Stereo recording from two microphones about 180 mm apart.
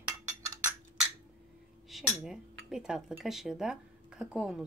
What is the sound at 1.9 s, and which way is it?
Speech, centre (ahead or behind).